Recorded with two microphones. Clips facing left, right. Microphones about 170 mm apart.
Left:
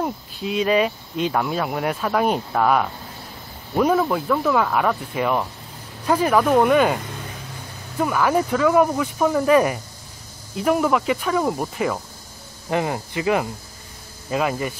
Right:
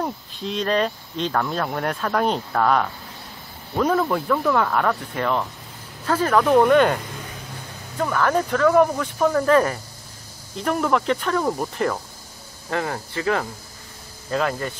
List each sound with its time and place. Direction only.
0.0 s speech: 5° left (ahead or behind)
8.0 s speech: 10° left (ahead or behind)
12.6 s speech: 15° left (ahead or behind)